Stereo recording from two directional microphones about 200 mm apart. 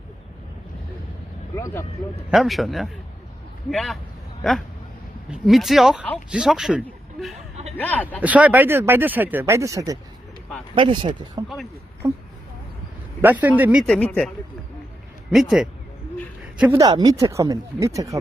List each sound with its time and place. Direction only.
1.5 s speech: 15° left (ahead or behind)
2.3 s speech: centre (ahead or behind)
5.3 s speech: centre (ahead or behind)
6.8 s a sound: centre (ahead or behind)
7.8 s speech: 10° left (ahead or behind)
8.2 s speech: 5° right (ahead or behind)
13.2 s speech: 10° right (ahead or behind)
13.8 s speech: 5° left (ahead or behind)
16.8 s speech: 20° right (ahead or behind)